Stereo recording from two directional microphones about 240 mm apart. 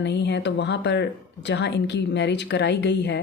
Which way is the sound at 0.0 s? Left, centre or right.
Left.